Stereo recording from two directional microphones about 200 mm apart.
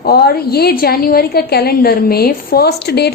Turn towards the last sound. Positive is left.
turn(degrees=55)  # may be behind; listen again after turning